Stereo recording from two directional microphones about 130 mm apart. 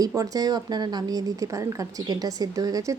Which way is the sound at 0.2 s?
30° right (ahead or behind).